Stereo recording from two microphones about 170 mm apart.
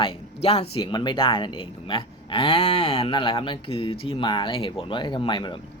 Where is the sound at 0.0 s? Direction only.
35° left (ahead or behind).